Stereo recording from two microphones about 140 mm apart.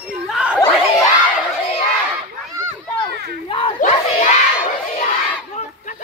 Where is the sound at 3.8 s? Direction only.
60° left (ahead or behind).